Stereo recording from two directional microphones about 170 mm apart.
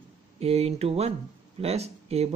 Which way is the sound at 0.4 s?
35° right (ahead or behind).